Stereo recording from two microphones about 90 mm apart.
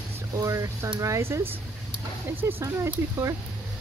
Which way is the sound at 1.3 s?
25° right (ahead or behind).